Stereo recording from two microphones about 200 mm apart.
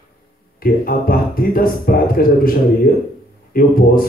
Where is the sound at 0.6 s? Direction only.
45° left (ahead or behind).